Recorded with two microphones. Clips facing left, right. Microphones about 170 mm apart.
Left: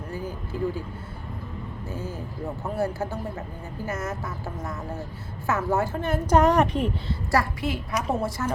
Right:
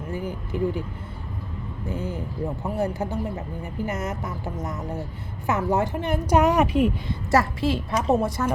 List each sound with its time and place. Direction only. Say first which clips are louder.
0.1 s a sound: right 4 dB; 20° right (ahead or behind)
1.9 s a woman's voice: right 5 dB; 15° right (ahead or behind)
7.3 s a woman's voice: right 4 dB; 25° right (ahead or behind)